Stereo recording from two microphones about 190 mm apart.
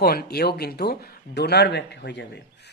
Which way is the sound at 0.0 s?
55° left (ahead or behind).